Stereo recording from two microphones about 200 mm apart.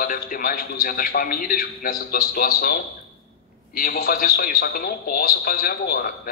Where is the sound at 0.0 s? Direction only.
45° left (ahead or behind).